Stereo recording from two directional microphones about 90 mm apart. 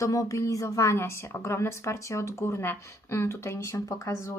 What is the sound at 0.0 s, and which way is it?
A woman's voice, 40° left (ahead or behind).